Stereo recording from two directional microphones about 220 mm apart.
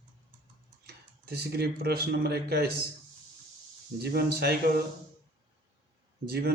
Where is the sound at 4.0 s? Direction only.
45° right (ahead or behind).